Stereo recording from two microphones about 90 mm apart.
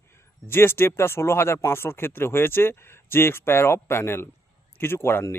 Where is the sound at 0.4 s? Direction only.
25° left (ahead or behind).